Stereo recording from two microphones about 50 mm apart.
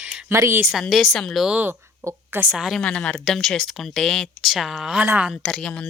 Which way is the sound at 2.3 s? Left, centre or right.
Right.